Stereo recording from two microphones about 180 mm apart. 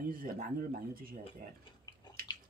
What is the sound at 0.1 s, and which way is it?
Speech, 50° right (ahead or behind).